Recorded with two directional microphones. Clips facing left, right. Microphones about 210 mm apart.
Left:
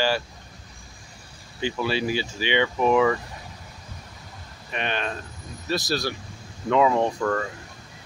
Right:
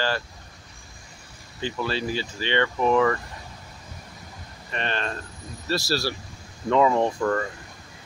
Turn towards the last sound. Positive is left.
turn(degrees=0)  # may be behind; listen again after turning